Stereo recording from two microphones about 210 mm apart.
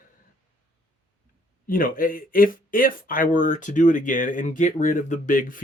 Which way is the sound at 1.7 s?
40° left (ahead or behind).